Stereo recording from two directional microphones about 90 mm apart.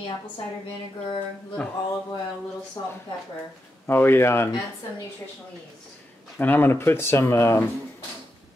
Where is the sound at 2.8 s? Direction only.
55° left (ahead or behind).